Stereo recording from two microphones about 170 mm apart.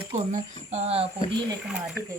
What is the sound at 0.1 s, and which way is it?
Speech, 45° right (ahead or behind).